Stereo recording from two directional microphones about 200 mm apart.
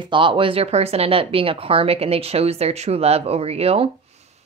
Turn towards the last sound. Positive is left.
turn(degrees=-30)  # may be behind; listen again after turning